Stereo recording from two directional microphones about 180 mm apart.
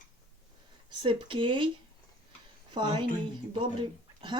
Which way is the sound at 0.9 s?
25° right (ahead or behind).